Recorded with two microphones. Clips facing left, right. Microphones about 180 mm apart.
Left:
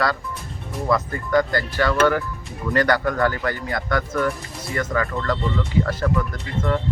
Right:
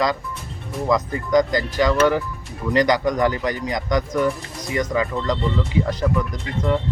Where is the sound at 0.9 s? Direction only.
15° right (ahead or behind).